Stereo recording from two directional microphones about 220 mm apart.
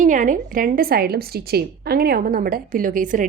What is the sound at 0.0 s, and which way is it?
A woman's voice, 35° right (ahead or behind).